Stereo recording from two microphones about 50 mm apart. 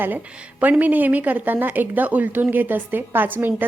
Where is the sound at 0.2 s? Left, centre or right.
Right.